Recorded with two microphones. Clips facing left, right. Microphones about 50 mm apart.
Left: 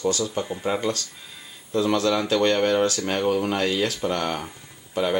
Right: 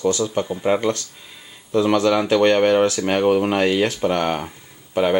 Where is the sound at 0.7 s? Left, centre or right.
Right.